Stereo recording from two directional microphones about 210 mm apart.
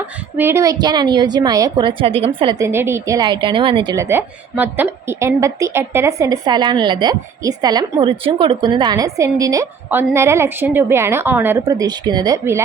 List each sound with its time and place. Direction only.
0.3 s a woman's voice: 10° right (ahead or behind)